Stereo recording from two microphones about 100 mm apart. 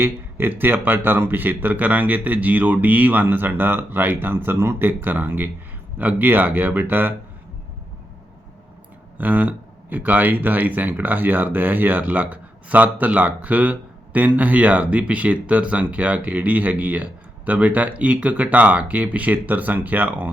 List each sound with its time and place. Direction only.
0.0 s a man's voice: 20° right (ahead or behind)
9.1 s speech: 15° right (ahead or behind)